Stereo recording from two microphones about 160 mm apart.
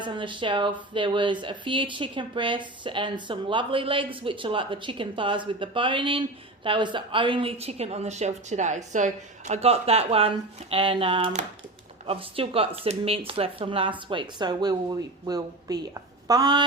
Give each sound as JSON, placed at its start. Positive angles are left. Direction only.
{"t": 0.0, "sound": "speech", "side_deg": -30}